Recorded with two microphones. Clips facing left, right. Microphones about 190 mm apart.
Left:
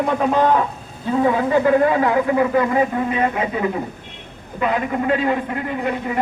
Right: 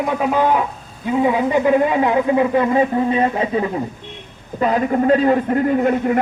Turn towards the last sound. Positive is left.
turn(degrees=-50)  # may be behind; listen again after turning